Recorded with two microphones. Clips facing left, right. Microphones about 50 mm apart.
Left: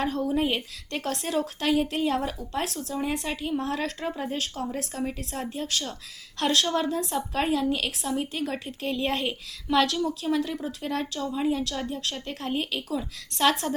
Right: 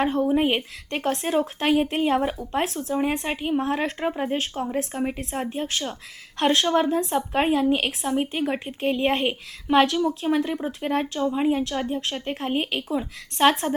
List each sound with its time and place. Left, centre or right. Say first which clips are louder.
0.0 s a woman's voice: right 5 dB; right